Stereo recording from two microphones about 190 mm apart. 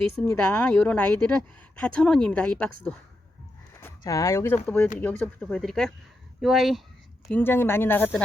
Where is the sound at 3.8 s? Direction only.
15° left (ahead or behind); by 6.8 s centre (ahead or behind).